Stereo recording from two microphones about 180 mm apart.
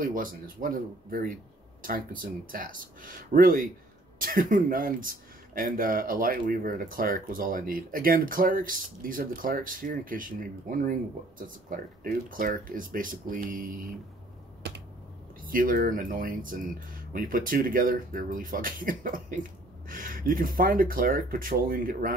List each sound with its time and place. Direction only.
0.0 s speech: 50° right (ahead or behind)
15.4 s speech: 50° right (ahead or behind)